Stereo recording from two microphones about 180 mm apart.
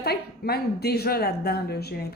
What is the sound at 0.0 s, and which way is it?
A woman's voice, 60° left (ahead or behind).